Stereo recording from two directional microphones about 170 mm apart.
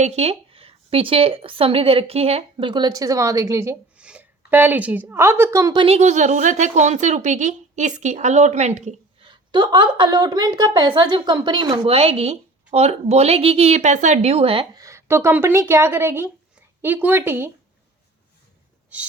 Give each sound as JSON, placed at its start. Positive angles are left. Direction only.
{"t": 0.0, "sound": "a woman's voice", "side_deg": -40}
{"t": 5.8, "sound": "a woman's voice", "side_deg": -40}
{"t": 9.3, "sound": "a woman's voice", "side_deg": -25}
{"t": 14.8, "sound": "speech", "side_deg": -15}
{"t": 18.9, "sound": "a sound", "side_deg": -10}